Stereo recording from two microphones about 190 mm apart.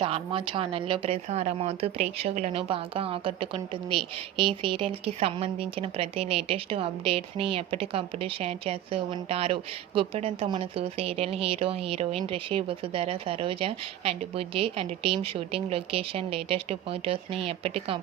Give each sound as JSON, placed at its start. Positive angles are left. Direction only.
{"t": 0.0, "sound": "speech", "side_deg": -30}